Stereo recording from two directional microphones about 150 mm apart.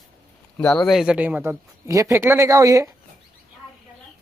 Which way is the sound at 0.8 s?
5° right (ahead or behind).